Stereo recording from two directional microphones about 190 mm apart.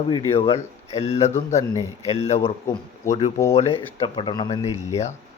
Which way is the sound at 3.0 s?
15° left (ahead or behind).